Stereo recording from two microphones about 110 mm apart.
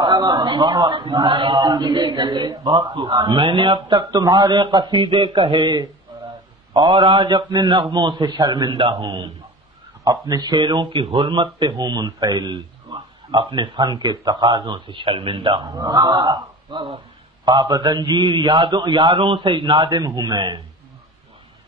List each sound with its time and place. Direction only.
0.0 s a man's voice: 40° right (ahead or behind)
10.0 s a man's voice: 35° right (ahead or behind)